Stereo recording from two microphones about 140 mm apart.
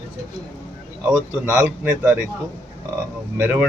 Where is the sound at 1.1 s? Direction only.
5° right (ahead or behind).